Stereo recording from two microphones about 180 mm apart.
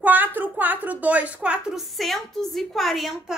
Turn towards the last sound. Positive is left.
turn(degrees=0)  # may be behind; listen again after turning